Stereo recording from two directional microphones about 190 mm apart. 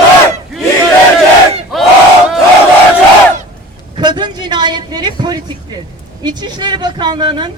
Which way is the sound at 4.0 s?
25° right (ahead or behind).